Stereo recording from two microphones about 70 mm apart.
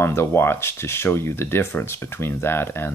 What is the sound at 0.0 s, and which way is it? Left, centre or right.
Speech, left.